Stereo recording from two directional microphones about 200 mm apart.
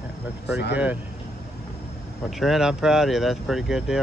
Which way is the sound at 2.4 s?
Centre (ahead or behind).